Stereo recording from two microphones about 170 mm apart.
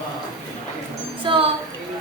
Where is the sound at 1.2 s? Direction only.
30° right (ahead or behind).